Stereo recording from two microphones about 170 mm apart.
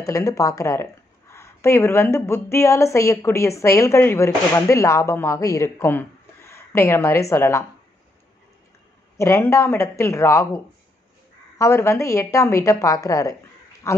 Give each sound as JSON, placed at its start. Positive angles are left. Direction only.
{"t": 0.0, "sound": "a woman's voice", "side_deg": 20}
{"t": 9.1, "sound": "a woman's voice", "side_deg": 15}